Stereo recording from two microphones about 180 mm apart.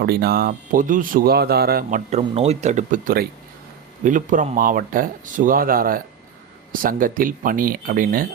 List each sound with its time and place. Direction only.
0.0 s speech: 60° right (ahead or behind)
2.0 s speech: 35° right (ahead or behind)